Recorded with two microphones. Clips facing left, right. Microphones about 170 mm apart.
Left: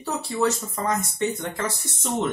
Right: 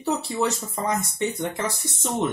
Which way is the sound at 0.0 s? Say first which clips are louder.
Even; 20° right (ahead or behind).